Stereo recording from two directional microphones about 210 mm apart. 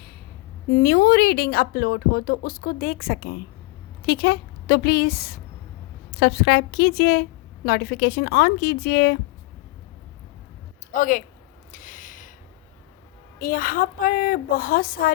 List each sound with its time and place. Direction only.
0.7 s a woman's voice: 45° left (ahead or behind)
10.9 s speech: 40° left (ahead or behind)
11.7 s a sound: 40° left (ahead or behind)
13.4 s a woman's voice: 40° left (ahead or behind)